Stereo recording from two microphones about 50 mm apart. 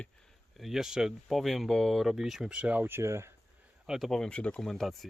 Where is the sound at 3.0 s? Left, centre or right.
Right.